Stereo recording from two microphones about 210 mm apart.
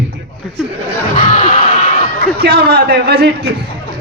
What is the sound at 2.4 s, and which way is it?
A man's voice, 50° right (ahead or behind).